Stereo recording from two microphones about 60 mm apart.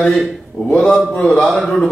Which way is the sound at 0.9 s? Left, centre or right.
Centre.